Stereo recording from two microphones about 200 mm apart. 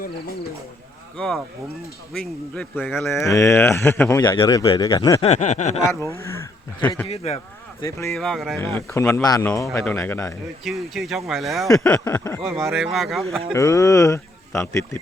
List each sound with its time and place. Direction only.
1.1 s a man's voice: centre (ahead or behind)
4.2 s a man's voice: 20° left (ahead or behind)
4.9 s a man's voice: 15° left (ahead or behind)
5.2 s a sound: 35° left (ahead or behind)
6.1 s speech: 15° left (ahead or behind)
7.1 s a sound: 30° left (ahead or behind)
7.8 s a man's voice: 15° left (ahead or behind)
8.1 s speech: centre (ahead or behind)
8.6 s a man's voice: 10° left (ahead or behind)
10.6 s speech: centre (ahead or behind)
11.9 s a man's voice: 10° left (ahead or behind)
12.4 s speech: centre (ahead or behind)
13.5 s a man's voice: 15° left (ahead or behind)